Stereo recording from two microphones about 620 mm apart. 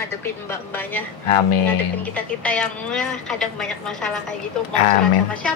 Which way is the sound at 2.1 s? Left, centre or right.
Centre.